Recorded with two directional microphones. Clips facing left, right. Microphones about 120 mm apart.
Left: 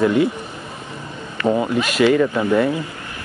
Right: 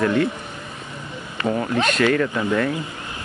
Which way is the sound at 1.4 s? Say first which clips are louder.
Left 3 dB; 15° left (ahead or behind).